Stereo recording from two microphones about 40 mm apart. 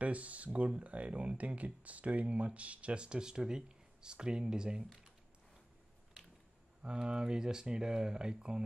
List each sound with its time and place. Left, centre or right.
0.0 s speech: right
6.8 s speech: right